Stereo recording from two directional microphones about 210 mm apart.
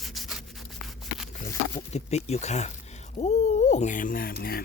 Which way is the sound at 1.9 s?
30° left (ahead or behind).